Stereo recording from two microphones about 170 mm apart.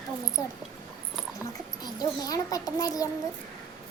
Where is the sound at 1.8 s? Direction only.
25° left (ahead or behind).